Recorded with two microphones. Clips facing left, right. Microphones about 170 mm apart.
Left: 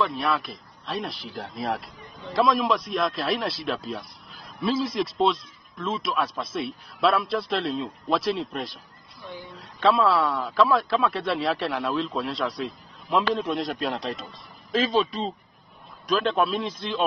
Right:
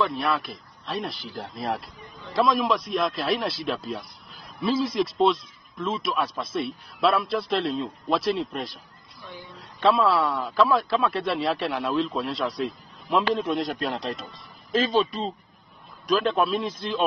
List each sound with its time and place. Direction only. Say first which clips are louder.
0.0 s a man's voice: even; centre (ahead or behind)
9.2 s speech: left 3 dB; 20° left (ahead or behind)
9.8 s a man's voice: even; centre (ahead or behind)